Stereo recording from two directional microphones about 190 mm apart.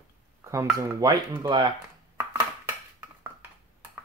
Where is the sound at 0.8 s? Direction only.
20° right (ahead or behind).